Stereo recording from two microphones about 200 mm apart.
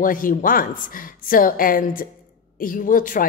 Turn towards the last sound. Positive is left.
turn(degrees=40)  # may be behind; listen again after turning